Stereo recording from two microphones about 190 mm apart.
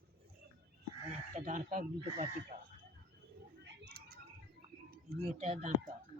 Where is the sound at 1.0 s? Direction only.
40° right (ahead or behind).